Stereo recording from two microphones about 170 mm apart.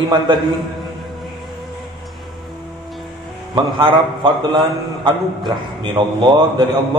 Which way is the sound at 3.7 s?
25° right (ahead or behind).